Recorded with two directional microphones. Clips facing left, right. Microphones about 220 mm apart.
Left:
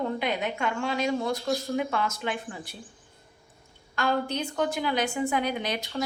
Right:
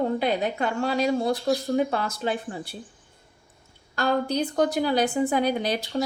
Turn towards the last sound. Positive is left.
turn(degrees=-35)  # may be behind; listen again after turning